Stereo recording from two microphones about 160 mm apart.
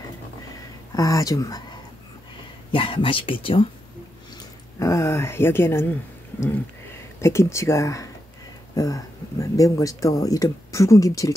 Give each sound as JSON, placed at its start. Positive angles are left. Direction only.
{"t": 0.9, "sound": "speech", "side_deg": 20}
{"t": 2.7, "sound": "speech", "side_deg": 35}
{"t": 4.7, "sound": "speech", "side_deg": 20}
{"t": 7.2, "sound": "speech", "side_deg": 20}